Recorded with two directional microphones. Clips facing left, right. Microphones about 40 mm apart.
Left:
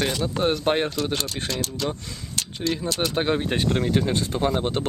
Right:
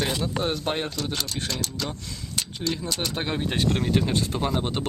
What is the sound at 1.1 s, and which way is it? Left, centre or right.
Speech, centre.